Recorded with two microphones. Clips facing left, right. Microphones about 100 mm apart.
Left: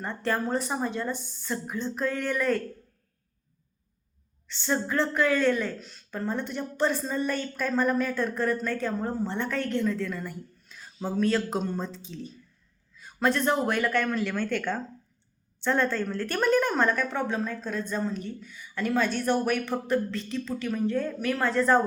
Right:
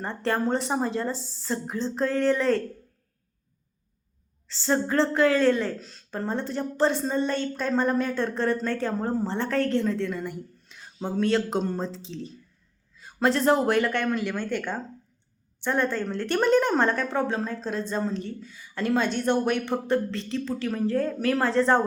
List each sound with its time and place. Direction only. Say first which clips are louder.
0.0 s a woman's voice: right 2 dB; 30° right (ahead or behind)
1.1 s a woman's voice: right 1 dB; 90° right
1.4 s a woman's voice: right 3 dB; 30° right (ahead or behind)
4.6 s a woman's voice: right 4 dB; 30° right (ahead or behind)